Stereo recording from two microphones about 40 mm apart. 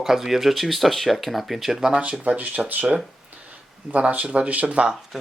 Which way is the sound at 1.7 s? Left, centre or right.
Centre.